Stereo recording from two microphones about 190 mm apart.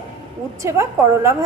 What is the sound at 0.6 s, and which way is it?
Speech, 15° right (ahead or behind).